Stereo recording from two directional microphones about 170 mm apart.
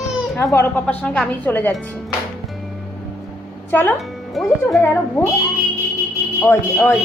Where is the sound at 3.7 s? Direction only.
10° left (ahead or behind).